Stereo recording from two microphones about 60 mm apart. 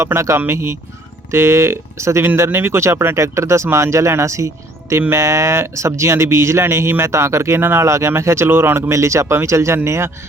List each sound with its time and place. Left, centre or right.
0.0 s speech: right
2.2 s speech: right
3.2 s speech: right
7.6 s speech: right
7.9 s speech: right